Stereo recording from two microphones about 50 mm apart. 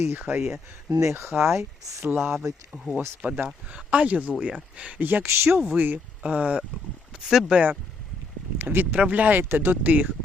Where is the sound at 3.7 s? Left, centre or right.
Right.